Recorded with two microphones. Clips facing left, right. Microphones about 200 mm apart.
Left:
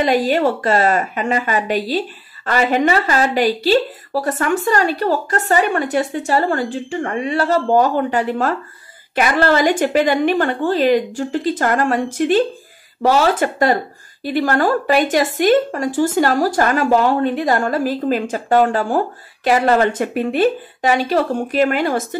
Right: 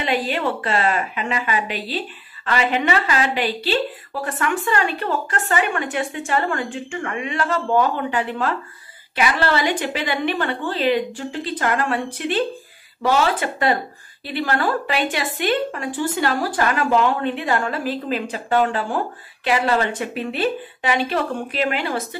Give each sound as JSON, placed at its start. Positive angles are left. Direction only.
{"t": 0.0, "sound": "a woman's voice", "side_deg": 40}